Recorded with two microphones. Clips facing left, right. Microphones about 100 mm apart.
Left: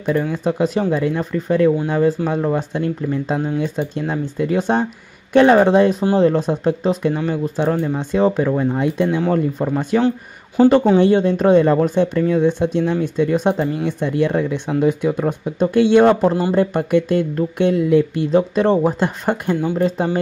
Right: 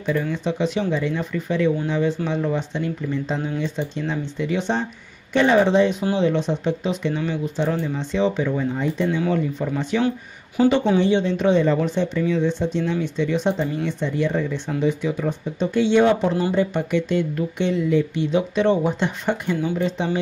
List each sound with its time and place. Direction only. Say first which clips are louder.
0.2 s speech: left 4 dB; 45° left (ahead or behind)
9.3 s speech: left 4 dB; 45° left (ahead or behind)
18.3 s speech: left 4 dB; 40° left (ahead or behind)